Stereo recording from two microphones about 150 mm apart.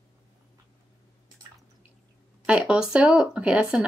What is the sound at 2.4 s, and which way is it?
Speech, 5° right (ahead or behind).